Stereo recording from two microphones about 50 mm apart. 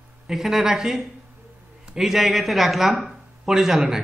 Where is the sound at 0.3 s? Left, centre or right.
Centre.